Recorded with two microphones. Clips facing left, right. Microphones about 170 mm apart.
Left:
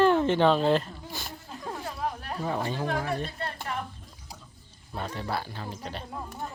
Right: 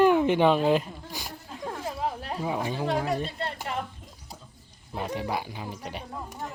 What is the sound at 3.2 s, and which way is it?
Speech, 30° right (ahead or behind).